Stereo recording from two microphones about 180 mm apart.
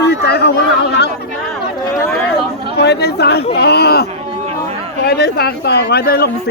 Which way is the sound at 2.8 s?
70° left (ahead or behind).